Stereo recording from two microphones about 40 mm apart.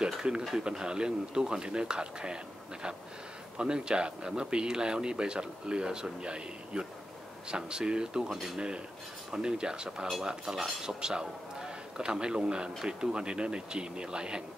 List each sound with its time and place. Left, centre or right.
0.0 s speech: right
10.2 s cutlery: centre
10.8 s a man's voice: centre